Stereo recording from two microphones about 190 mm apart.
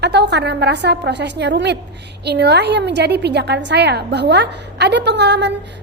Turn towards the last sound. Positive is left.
turn(degrees=-65)  # may be behind; listen again after turning